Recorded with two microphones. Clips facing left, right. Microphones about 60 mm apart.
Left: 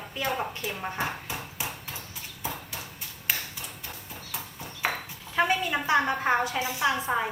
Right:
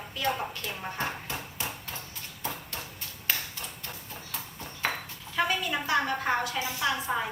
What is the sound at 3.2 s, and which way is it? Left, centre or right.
Ping, centre.